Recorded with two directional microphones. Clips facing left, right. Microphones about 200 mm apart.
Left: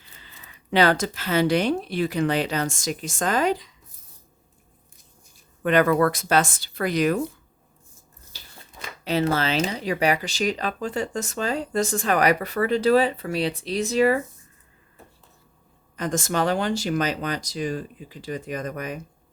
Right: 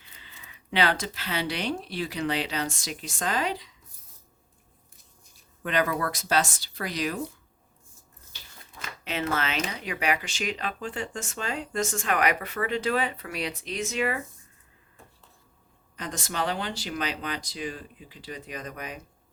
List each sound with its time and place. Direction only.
0.2 s speech: 40° left (ahead or behind)
5.6 s speech: 55° left (ahead or behind)
9.0 s speech: 35° left (ahead or behind)
16.0 s speech: 45° left (ahead or behind)